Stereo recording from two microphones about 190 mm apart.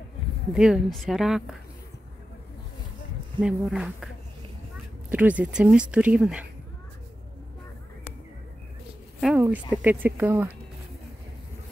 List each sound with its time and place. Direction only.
0.6 s speech: centre (ahead or behind)
3.3 s speech: 5° right (ahead or behind)
5.1 s speech: 10° right (ahead or behind)
9.2 s speech: 5° right (ahead or behind)